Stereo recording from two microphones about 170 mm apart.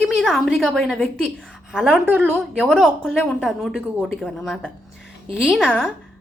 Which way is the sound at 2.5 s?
5° left (ahead or behind).